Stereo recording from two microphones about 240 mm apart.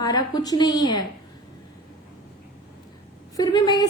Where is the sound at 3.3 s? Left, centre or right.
Centre.